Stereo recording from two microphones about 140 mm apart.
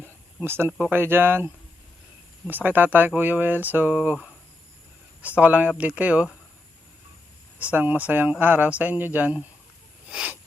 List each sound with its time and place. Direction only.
0.4 s speech: 15° right (ahead or behind)
2.5 s speech: 15° right (ahead or behind)
7.6 s speech: 10° right (ahead or behind)
10.1 s a sound: 5° right (ahead or behind)